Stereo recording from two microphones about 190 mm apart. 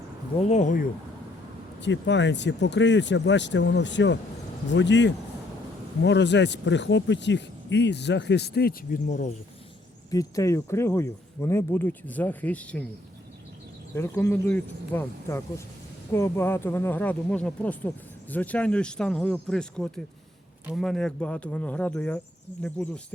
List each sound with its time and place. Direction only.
0.3 s speech: 35° left (ahead or behind)
1.8 s speech: 70° left (ahead or behind)
9.0 s speech: 40° left (ahead or behind)
10.1 s speech: 20° left (ahead or behind)
13.9 s speech: 15° left (ahead or behind)